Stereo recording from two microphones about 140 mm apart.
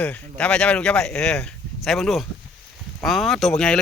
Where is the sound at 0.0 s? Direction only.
10° left (ahead or behind).